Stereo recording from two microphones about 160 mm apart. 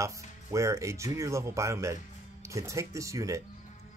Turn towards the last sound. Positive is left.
turn(degrees=-20)  # may be behind; listen again after turning